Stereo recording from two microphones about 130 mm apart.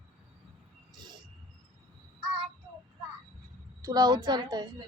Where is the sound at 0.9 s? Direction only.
35° right (ahead or behind).